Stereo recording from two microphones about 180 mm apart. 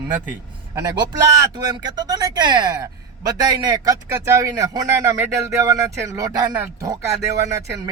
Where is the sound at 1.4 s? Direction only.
20° right (ahead or behind).